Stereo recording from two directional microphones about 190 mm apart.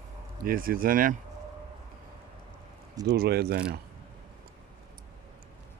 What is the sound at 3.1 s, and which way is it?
Speech, 55° right (ahead or behind).